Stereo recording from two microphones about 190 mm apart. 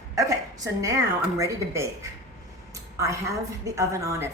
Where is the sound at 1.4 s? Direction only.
15° right (ahead or behind).